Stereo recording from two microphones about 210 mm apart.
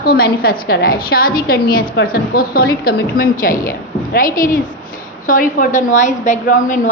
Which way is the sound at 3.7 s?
40° left (ahead or behind).